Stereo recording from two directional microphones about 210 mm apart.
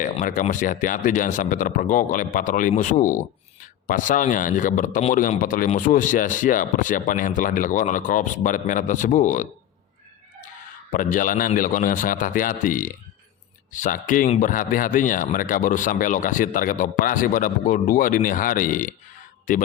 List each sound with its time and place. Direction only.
0.0 s a man's voice: 40° left (ahead or behind)
10.9 s a man's voice: 40° left (ahead or behind)